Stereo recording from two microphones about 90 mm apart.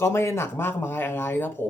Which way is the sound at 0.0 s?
30° left (ahead or behind).